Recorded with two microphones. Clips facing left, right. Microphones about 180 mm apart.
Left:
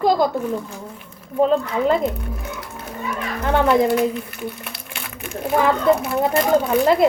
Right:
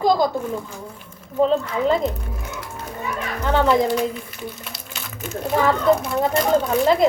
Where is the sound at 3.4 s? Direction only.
5° left (ahead or behind).